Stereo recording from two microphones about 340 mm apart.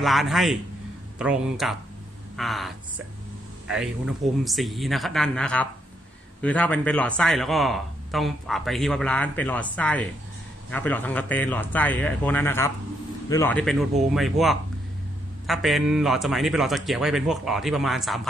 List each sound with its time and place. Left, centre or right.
0.0 s speech: centre
3.7 s speech: centre